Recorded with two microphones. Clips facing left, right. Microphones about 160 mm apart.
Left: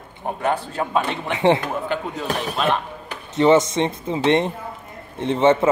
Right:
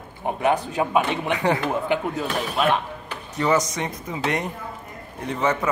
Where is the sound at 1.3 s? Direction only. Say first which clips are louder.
Left 6 dB; 25° left (ahead or behind).